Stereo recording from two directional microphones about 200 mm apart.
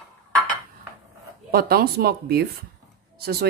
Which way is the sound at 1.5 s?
50° right (ahead or behind).